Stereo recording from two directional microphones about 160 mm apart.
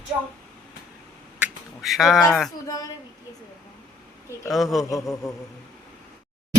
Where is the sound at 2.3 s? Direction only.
Centre (ahead or behind).